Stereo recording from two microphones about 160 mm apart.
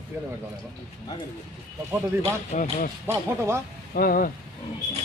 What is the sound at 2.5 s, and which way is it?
Speech, 50° left (ahead or behind).